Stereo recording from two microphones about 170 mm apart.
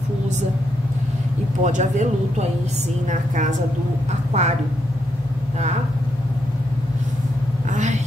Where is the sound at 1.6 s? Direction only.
45° right (ahead or behind).